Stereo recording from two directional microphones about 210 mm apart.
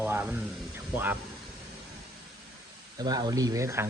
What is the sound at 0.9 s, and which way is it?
Speech, 10° right (ahead or behind).